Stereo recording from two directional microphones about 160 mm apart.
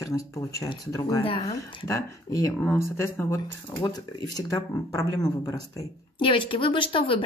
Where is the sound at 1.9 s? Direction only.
20° left (ahead or behind).